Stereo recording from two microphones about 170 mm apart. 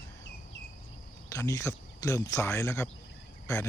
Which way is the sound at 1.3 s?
20° left (ahead or behind).